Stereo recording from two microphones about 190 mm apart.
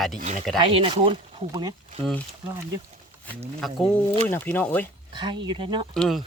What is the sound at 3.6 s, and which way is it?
Speech, centre (ahead or behind).